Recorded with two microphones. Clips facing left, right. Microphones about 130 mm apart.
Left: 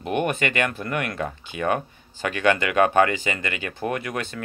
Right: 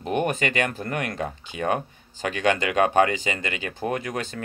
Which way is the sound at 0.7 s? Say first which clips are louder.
Left 1 dB; 40° right (ahead or behind).